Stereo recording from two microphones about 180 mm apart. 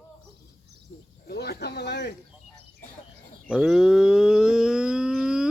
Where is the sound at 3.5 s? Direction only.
5° right (ahead or behind).